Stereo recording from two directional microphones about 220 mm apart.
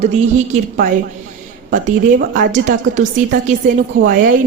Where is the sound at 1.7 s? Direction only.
40° right (ahead or behind).